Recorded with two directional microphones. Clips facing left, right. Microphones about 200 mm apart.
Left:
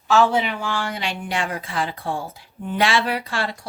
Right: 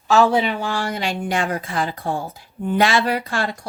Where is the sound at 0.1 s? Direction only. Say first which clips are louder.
Right 2 dB; 35° right (ahead or behind).